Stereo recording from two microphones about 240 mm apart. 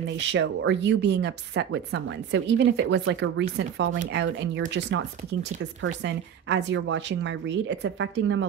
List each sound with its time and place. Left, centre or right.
0.2 s speech: right